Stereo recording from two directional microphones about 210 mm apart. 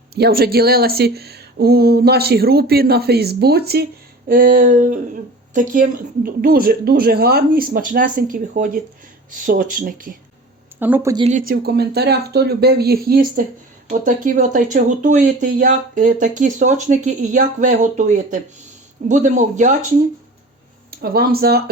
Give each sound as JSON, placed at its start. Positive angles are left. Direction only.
{"t": 0.1, "sound": "speech", "side_deg": -50}
{"t": 10.8, "sound": "speech", "side_deg": -10}
{"t": 11.2, "sound": "speech", "side_deg": -35}
{"t": 21.0, "sound": "speech", "side_deg": -45}